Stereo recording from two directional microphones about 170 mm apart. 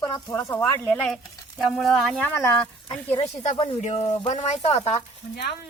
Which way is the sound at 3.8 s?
35° left (ahead or behind).